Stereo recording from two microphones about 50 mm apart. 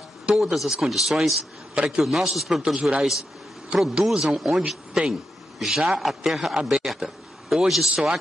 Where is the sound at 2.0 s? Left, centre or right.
Centre.